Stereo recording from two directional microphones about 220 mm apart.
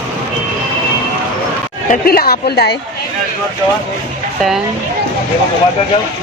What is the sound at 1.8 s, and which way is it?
Speech, 45° left (ahead or behind).